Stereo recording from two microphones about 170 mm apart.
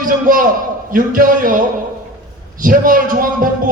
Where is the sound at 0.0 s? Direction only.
55° right (ahead or behind).